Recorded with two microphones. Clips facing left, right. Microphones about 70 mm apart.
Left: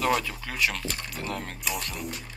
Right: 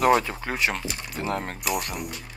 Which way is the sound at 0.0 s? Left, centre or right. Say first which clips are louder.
Right 6 dB; right.